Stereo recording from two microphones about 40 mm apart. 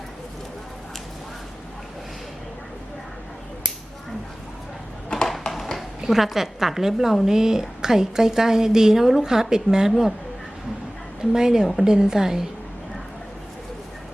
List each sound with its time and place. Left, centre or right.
5.0 s a sound: centre
6.1 s a woman's voice: centre
11.2 s a woman's voice: centre